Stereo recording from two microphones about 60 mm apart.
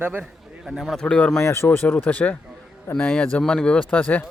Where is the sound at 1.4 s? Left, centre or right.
Left; by 3.8 s centre.